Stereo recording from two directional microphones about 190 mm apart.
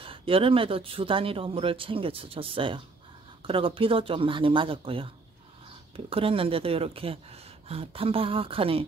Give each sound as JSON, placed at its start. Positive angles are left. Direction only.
{"t": 0.0, "sound": "speech", "side_deg": -30}